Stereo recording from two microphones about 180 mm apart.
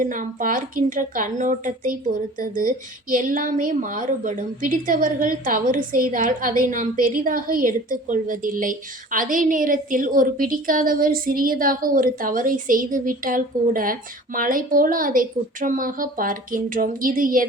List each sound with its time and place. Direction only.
0.0 s a woman's voice: 45° right (ahead or behind)